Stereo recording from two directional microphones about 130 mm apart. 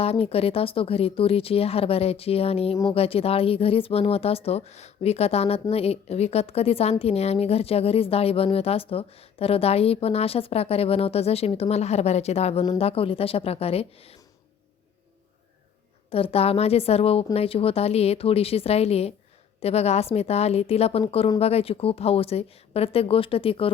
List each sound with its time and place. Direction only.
0.0 s speech: 50° left (ahead or behind)
16.0 s speech: 45° left (ahead or behind)